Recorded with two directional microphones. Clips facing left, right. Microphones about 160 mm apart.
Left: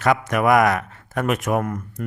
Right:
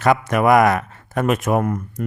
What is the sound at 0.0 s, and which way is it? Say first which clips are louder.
Speech: right 2 dB; 30° right (ahead or behind).